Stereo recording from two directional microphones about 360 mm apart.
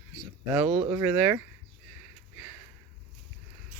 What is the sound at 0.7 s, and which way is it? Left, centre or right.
Speech, centre.